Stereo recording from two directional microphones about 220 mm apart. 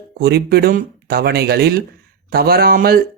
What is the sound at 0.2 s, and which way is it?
Speech, 45° right (ahead or behind).